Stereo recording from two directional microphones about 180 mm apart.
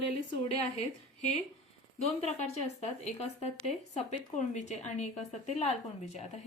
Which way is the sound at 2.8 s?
35° left (ahead or behind).